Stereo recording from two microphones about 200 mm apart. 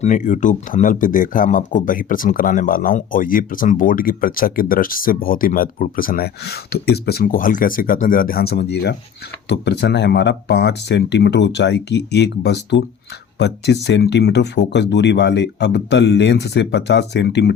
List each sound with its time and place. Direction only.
0.0 s speech: 40° left (ahead or behind); by 17.5 s 55° left (ahead or behind)